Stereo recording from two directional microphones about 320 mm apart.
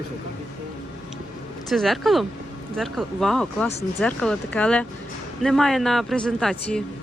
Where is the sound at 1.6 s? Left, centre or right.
Centre.